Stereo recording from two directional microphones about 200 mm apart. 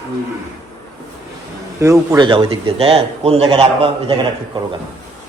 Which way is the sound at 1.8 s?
15° right (ahead or behind).